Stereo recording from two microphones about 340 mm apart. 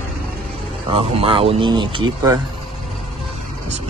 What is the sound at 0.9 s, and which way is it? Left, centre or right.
Speech, centre.